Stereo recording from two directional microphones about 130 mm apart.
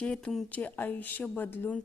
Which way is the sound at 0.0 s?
5° left (ahead or behind).